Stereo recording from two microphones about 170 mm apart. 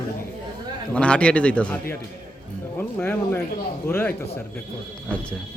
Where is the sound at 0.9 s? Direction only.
5° left (ahead or behind).